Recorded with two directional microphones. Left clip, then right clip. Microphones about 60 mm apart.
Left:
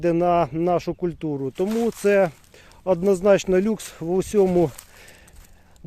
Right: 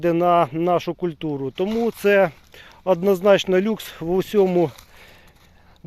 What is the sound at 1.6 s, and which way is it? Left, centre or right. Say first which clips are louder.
Speech: right 1 dB; left.